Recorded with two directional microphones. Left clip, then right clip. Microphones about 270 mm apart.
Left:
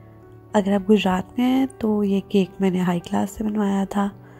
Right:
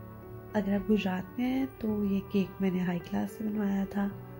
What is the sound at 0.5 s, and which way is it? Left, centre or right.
Speech, left.